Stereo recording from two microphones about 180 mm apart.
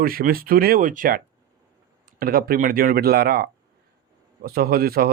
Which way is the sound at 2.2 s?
55° right (ahead or behind).